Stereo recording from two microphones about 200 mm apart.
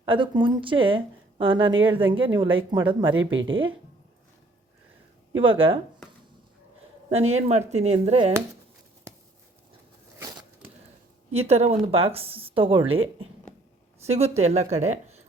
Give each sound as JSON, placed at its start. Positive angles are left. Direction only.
{"t": 0.0, "sound": "speech", "side_deg": -25}
{"t": 3.2, "sound": "speech", "side_deg": -70}
{"t": 5.4, "sound": "speech", "side_deg": -25}
{"t": 7.1, "sound": "speech", "side_deg": -30}
{"t": 11.3, "sound": "speech", "side_deg": -30}